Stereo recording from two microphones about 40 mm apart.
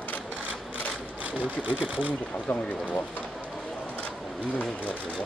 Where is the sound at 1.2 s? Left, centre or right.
Right.